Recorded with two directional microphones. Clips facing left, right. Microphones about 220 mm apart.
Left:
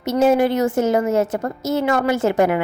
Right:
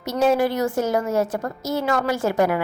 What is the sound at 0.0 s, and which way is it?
A woman's voice, 25° left (ahead or behind).